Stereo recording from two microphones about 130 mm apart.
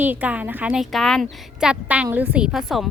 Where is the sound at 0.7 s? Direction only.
Centre (ahead or behind).